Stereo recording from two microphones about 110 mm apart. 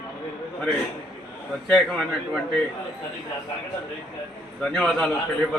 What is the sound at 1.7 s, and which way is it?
Speech, 5° left (ahead or behind).